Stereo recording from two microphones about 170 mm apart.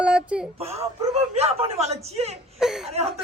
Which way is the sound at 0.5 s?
35° right (ahead or behind).